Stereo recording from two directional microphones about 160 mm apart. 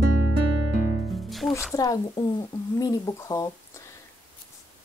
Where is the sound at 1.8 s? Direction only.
20° left (ahead or behind).